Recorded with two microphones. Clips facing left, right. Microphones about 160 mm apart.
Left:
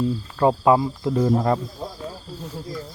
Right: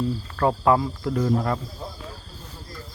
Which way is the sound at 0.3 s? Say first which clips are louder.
Left 3 dB; 20° left (ahead or behind).